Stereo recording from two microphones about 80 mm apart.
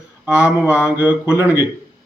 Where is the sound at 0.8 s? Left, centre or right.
Right.